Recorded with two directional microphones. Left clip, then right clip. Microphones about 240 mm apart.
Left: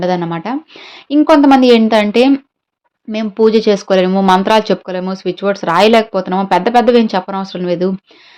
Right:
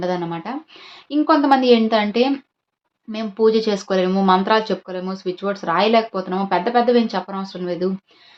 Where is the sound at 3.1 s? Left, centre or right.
Left.